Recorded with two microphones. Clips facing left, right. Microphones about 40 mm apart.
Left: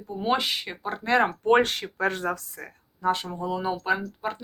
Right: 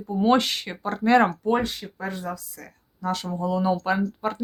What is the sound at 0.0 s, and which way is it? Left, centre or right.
Speech, centre.